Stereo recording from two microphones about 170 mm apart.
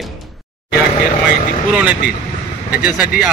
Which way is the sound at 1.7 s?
5° right (ahead or behind).